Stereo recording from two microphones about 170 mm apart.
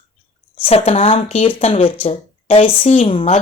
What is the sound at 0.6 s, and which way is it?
Speech, 35° left (ahead or behind).